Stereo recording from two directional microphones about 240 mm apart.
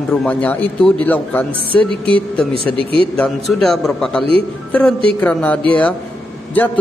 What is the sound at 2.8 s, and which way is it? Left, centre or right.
Speech, right.